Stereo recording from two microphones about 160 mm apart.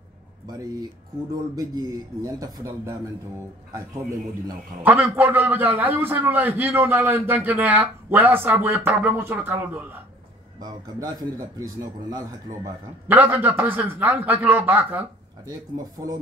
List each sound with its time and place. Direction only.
0.5 s a man's voice: 25° right (ahead or behind)
4.8 s a man's voice: 10° right (ahead or behind)
10.6 s a man's voice: 25° right (ahead or behind)
13.1 s a man's voice: 10° right (ahead or behind)